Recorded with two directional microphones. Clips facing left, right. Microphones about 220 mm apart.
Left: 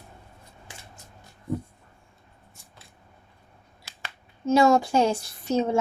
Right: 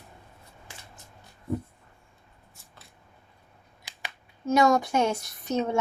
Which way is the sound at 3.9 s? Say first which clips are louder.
Right 2 dB; 15° right (ahead or behind).